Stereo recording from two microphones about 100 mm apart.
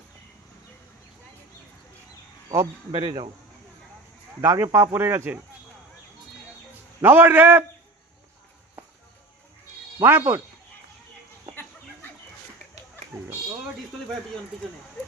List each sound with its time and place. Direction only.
2.9 s insect: 50° right (ahead or behind)
4.4 s speech: 25° right (ahead or behind)
7.0 s speech: 20° right (ahead or behind)
10.0 s speech: 25° right (ahead or behind)
13.1 s a sound: 5° right (ahead or behind)